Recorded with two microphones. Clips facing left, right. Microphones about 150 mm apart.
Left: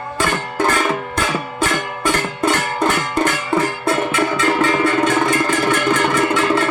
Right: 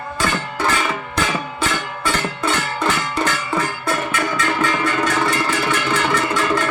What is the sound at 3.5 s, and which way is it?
Music, 25° left (ahead or behind).